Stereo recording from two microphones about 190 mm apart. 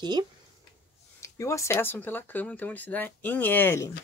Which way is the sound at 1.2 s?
15° left (ahead or behind).